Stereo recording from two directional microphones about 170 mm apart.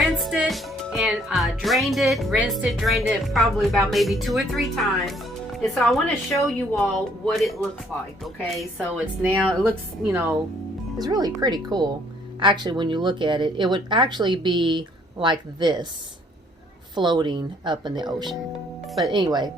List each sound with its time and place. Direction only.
0.0 s speech: centre (ahead or behind); by 15.9 s 25° right (ahead or behind)
16.9 s speech: 25° right (ahead or behind)